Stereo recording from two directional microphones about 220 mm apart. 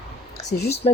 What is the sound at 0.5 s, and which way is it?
Speech, 40° left (ahead or behind).